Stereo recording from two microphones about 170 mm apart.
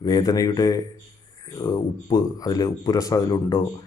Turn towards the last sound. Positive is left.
turn(degrees=20)  # may be behind; listen again after turning